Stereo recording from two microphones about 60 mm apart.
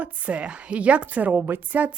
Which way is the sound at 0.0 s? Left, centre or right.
Right.